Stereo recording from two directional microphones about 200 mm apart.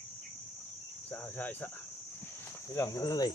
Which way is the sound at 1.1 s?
10° left (ahead or behind).